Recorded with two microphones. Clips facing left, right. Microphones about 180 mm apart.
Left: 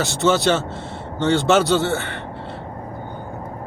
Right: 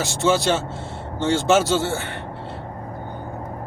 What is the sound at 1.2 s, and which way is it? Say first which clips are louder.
Speech: left 2 dB; centre (ahead or behind).